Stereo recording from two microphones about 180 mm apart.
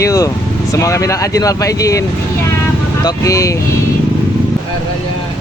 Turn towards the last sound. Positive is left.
turn(degrees=20)  # may be behind; listen again after turning